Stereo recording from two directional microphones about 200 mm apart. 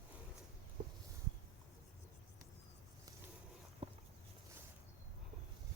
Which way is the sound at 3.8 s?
30° right (ahead or behind).